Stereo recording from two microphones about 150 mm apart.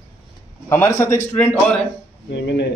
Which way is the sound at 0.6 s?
20° left (ahead or behind).